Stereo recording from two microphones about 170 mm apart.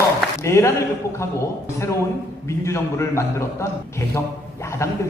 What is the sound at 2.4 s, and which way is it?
A man's voice, 15° left (ahead or behind).